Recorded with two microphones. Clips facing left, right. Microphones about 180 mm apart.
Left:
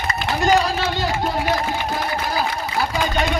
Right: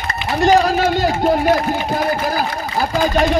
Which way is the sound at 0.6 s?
45° right (ahead or behind).